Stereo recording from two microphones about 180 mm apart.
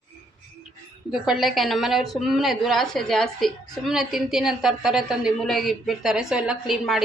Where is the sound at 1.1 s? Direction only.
Centre (ahead or behind).